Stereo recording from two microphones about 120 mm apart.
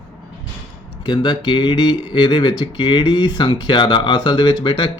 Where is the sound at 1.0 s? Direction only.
40° left (ahead or behind).